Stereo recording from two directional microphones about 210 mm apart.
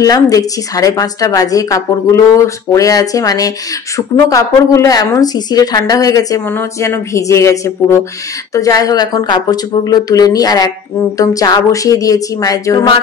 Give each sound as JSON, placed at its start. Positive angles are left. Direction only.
{"t": 0.0, "sound": "a woman's voice", "side_deg": 15}